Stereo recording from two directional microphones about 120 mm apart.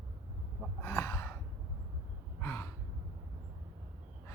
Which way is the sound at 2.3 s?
20° left (ahead or behind).